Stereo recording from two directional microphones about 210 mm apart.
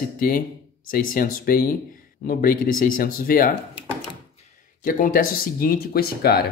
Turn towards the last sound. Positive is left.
turn(degrees=50)  # may be behind; listen again after turning